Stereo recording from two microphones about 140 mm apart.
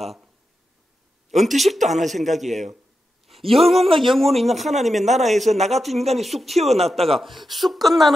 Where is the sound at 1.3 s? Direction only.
Centre (ahead or behind).